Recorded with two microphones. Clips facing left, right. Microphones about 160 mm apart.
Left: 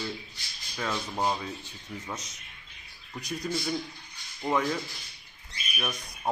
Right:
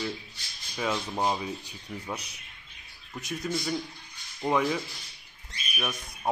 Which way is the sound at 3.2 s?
5° right (ahead or behind).